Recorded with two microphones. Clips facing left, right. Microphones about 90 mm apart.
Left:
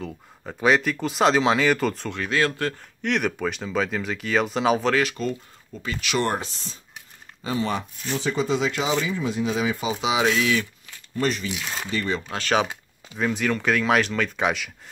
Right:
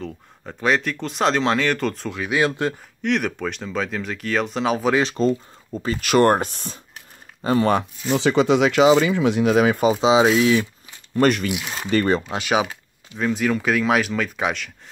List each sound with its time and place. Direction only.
0.0 s speech: centre (ahead or behind)
2.3 s speech: 20° right (ahead or behind)
3.0 s speech: centre (ahead or behind)
4.9 s speech: 30° right (ahead or behind); by 7.8 s 55° right (ahead or behind)
8.1 s speech: 85° right; by 9.9 s 55° right (ahead or behind)
9.9 s speech: 25° right (ahead or behind)
11.1 s speech: 65° right (ahead or behind)
11.5 s speech: 10° right (ahead or behind)
11.9 s speech: 55° right (ahead or behind)
12.3 s speech: 15° right (ahead or behind)
12.6 s speech: 5° left (ahead or behind)